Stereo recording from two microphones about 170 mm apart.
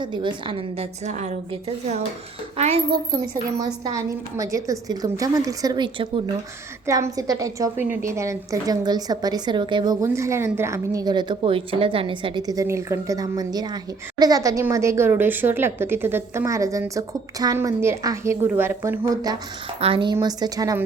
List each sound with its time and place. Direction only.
0.0 s a woman's voice: 30° right (ahead or behind)
1.0 s a woman's voice: 45° right (ahead or behind)
3.6 s a woman's voice: 20° right (ahead or behind)